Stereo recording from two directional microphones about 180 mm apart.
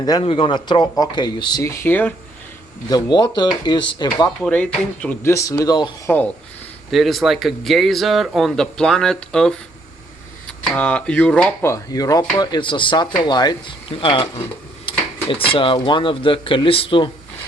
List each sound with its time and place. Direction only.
0.0 s speech: 25° left (ahead or behind)
2.9 s speech: 25° left (ahead or behind)
4.4 s speech: 5° left (ahead or behind)
6.9 s speech: centre (ahead or behind)
10.8 s speech: 5° left (ahead or behind); by 14.4 s 30° left (ahead or behind)
15.4 s speech: 30° left (ahead or behind)